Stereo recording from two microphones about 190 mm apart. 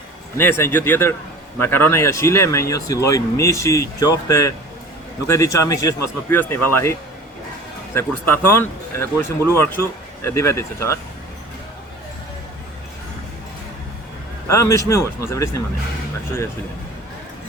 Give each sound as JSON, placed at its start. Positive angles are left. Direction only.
{"t": 0.3, "sound": "speech", "side_deg": 10}
{"t": 7.9, "sound": "speech", "side_deg": 10}
{"t": 14.4, "sound": "speech", "side_deg": 15}